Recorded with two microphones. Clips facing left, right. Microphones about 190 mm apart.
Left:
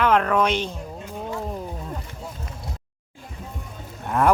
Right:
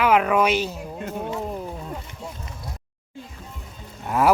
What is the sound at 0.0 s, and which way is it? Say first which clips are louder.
Speech: right 1 dB; 5° right (ahead or behind).